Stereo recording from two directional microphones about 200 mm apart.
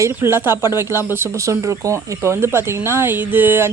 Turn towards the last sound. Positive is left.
turn(degrees=-10)  # may be behind; listen again after turning